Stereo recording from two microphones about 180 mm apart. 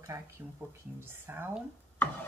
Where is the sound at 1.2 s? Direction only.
10° right (ahead or behind).